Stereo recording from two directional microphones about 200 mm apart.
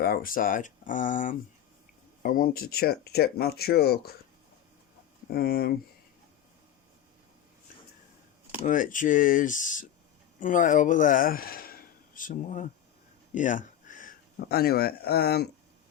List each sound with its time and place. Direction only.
0.0 s speech: 45° left (ahead or behind)
5.3 s speech: 50° left (ahead or behind)
8.6 s speech: 40° left (ahead or behind)